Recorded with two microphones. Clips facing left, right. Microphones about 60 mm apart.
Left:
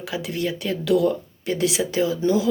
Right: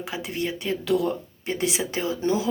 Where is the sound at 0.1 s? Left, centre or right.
Right.